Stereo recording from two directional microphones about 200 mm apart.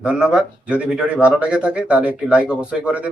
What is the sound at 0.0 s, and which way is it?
Speech, 5° right (ahead or behind).